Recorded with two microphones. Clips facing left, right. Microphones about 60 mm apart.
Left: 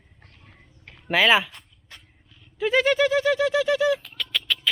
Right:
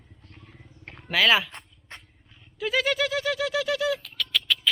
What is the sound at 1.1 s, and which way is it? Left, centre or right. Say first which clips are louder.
Speech: left 3 dB; centre.